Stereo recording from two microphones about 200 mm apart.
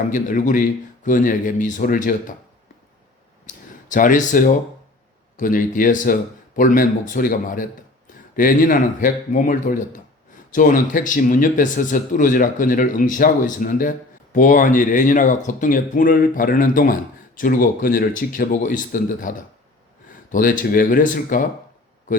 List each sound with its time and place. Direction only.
0.1 s a man's voice: 40° left (ahead or behind)
3.4 s a sound: 40° left (ahead or behind)
5.4 s a man's voice: 45° left (ahead or behind)